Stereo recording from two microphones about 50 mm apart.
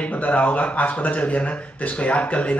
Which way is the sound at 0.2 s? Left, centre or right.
Left.